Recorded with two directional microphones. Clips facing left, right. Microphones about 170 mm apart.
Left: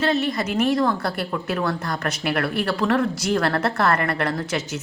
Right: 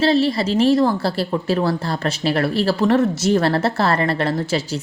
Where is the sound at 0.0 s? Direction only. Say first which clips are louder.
Right 5 dB; 30° right (ahead or behind).